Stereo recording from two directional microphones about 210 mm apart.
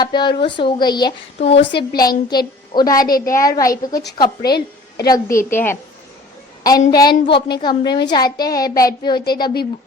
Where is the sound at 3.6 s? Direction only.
15° left (ahead or behind).